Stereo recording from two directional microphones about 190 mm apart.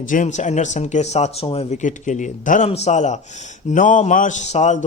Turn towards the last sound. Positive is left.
turn(degrees=35)  # may be behind; listen again after turning